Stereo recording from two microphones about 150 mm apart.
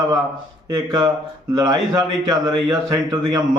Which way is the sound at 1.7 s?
25° right (ahead or behind).